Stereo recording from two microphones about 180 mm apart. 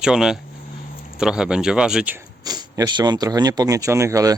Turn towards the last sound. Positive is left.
turn(degrees=-15)  # may be behind; listen again after turning